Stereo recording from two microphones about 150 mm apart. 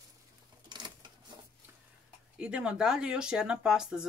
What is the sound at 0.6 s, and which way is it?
Sewing machine, 30° right (ahead or behind).